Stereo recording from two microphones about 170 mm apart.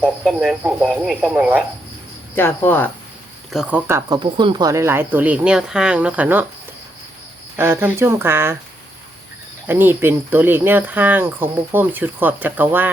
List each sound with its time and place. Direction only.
0.0 s speech: 5° right (ahead or behind)
2.3 s speech: 10° left (ahead or behind)
3.5 s speech: 5° right (ahead or behind)
3.8 s speech: 15° right (ahead or behind)
4.2 s speech: 30° right (ahead or behind); by 6.4 s 10° right (ahead or behind)
7.5 s speech: 10° right (ahead or behind)
9.6 s speech: 10° right (ahead or behind)